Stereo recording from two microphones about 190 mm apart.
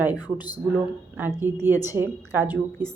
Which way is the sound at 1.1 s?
10° right (ahead or behind).